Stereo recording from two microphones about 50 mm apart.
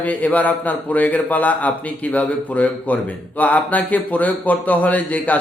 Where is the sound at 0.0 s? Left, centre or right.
Left.